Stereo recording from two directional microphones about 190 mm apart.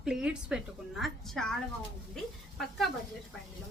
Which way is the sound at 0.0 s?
5° right (ahead or behind).